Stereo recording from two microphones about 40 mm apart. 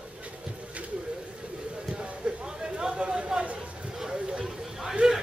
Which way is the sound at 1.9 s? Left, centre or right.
Right.